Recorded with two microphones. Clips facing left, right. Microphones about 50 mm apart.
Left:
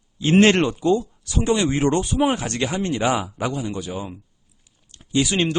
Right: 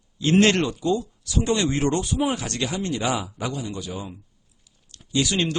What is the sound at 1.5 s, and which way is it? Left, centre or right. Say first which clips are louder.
Speech: left 3 dB; centre.